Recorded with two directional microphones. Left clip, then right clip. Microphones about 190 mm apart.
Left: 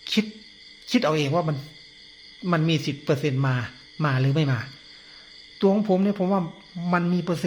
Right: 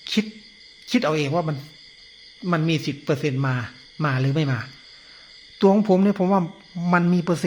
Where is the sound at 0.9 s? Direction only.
10° right (ahead or behind).